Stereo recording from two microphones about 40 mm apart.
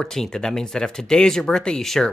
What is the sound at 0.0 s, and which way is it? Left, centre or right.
Speech, centre.